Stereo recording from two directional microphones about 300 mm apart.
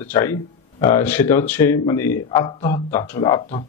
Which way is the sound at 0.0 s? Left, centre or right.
Centre.